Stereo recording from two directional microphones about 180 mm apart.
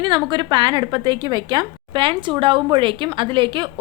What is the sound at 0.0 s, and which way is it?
A woman's voice, 25° right (ahead or behind).